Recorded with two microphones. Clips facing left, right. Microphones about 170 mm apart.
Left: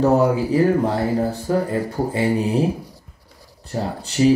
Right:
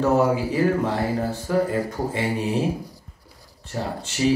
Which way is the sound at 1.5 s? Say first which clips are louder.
Right 1 dB; 30° left (ahead or behind).